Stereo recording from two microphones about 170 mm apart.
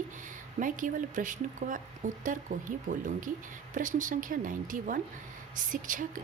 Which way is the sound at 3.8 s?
50° right (ahead or behind).